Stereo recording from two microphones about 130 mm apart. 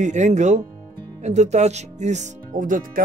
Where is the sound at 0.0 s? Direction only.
65° right (ahead or behind).